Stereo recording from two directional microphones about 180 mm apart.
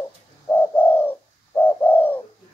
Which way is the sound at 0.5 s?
10° left (ahead or behind).